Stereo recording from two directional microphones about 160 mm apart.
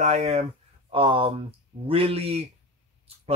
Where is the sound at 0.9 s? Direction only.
35° right (ahead or behind).